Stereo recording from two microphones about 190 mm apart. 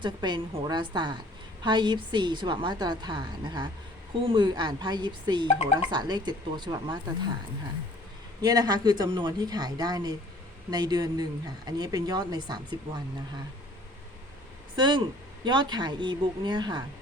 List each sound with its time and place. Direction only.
0.0 s a woman's voice: 25° right (ahead or behind)
8.4 s a woman's voice: 20° right (ahead or behind)
14.8 s a woman's voice: 25° right (ahead or behind)